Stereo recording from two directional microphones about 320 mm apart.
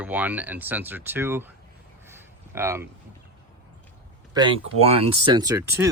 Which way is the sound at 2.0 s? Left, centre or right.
Centre.